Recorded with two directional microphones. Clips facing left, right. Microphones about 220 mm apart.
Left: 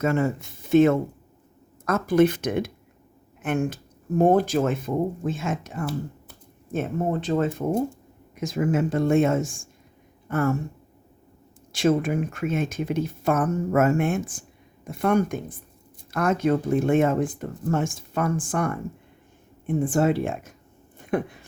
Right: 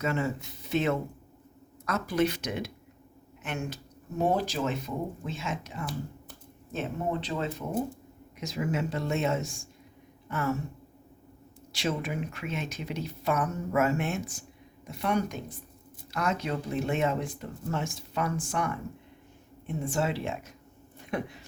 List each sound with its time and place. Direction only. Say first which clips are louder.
0.0 s speech: left 7 dB; 50° left (ahead or behind)
11.7 s speech: left 10 dB; 50° left (ahead or behind)
21.0 s a sound: left 7 dB; 50° left (ahead or behind)